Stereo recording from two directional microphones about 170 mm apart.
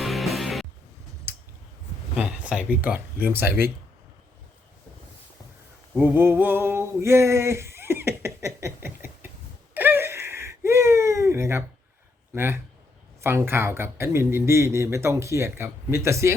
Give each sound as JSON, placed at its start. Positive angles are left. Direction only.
{"t": 0.0, "sound": "music", "side_deg": 0}
{"t": 1.3, "sound": "clicking", "side_deg": -10}
{"t": 2.1, "sound": "a man's voice", "side_deg": -5}
{"t": 5.9, "sound": "a sound", "side_deg": -10}
{"t": 9.7, "sound": "gasp", "side_deg": -10}
{"t": 12.3, "sound": "a man's voice", "side_deg": -10}